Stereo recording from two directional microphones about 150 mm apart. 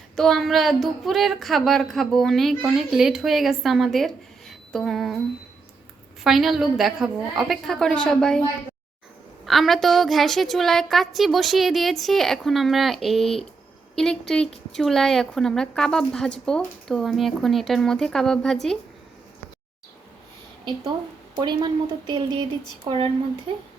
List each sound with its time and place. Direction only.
0.2 s a woman's voice: centre (ahead or behind)
6.2 s a woman's voice: centre (ahead or behind)
9.5 s a woman's voice: centre (ahead or behind)
21.3 s speech: 30° right (ahead or behind)